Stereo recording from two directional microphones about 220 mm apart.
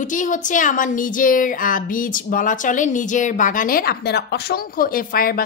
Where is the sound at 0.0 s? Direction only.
35° left (ahead or behind).